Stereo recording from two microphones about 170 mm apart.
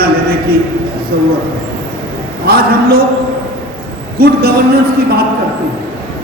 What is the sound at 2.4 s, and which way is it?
Speech, 65° right (ahead or behind).